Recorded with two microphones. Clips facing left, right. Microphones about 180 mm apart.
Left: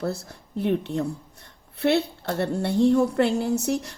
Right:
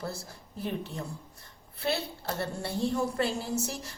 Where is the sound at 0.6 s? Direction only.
65° left (ahead or behind).